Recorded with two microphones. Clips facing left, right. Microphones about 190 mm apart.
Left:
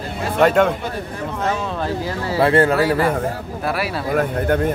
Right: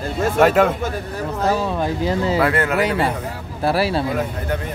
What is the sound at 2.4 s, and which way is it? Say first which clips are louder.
Speech: left 4 dB; 30° left (ahead or behind).